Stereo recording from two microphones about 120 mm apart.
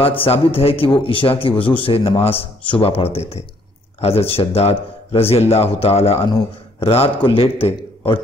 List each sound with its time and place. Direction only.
0.0 s a man's voice: 50° left (ahead or behind)